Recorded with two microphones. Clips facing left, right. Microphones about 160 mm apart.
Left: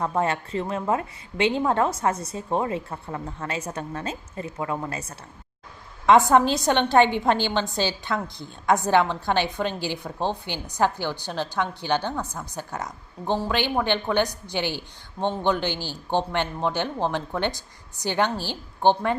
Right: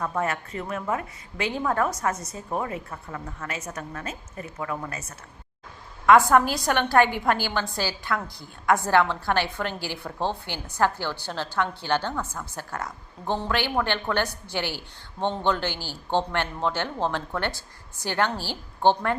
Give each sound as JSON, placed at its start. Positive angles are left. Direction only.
{"t": 0.0, "sound": "a woman's voice", "side_deg": 30}